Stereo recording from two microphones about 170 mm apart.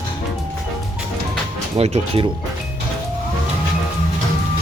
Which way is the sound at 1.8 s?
35° right (ahead or behind).